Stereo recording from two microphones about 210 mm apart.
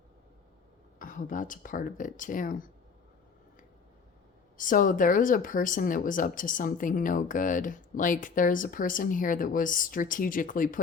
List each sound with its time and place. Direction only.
0.9 s speech: 40° left (ahead or behind)
4.5 s speech: 40° left (ahead or behind)